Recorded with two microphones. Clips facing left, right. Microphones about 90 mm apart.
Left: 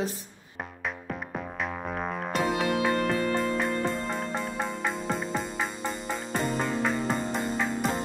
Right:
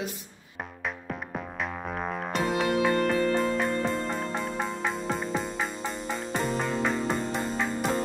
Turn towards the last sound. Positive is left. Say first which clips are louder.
# even
turn(degrees=0)  # may be behind; listen again after turning